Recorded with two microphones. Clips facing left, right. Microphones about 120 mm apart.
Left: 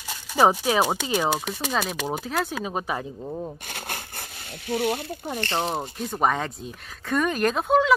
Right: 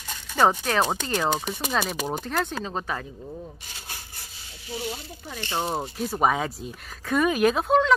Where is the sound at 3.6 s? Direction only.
60° left (ahead or behind).